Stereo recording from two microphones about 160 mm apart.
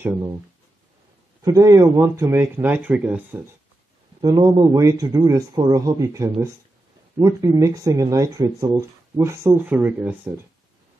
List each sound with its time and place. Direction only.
1.4 s speech: 20° right (ahead or behind)
4.2 s speech: 20° right (ahead or behind)